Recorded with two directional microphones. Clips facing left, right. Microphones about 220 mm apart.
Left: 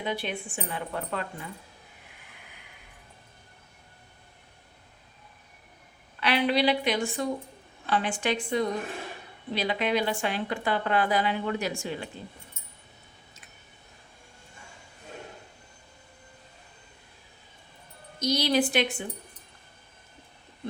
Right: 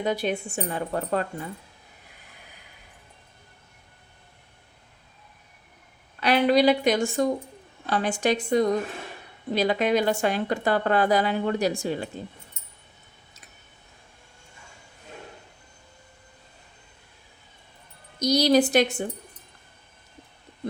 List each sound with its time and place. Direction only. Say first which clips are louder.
0.0 s speech: right 6 dB; 45° right (ahead or behind)
6.1 s a woman's voice: right 5 dB; 45° right (ahead or behind)
18.2 s speech: right 5 dB; 40° right (ahead or behind)